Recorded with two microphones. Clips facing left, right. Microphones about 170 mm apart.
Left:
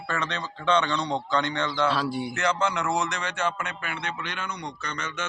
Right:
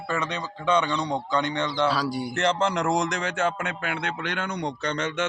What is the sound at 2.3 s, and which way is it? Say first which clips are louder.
Speech: right 4 dB; 35° right (ahead or behind).